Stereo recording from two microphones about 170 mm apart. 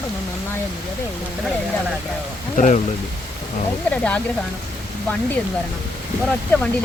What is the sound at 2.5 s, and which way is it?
Speech, 45° left (ahead or behind).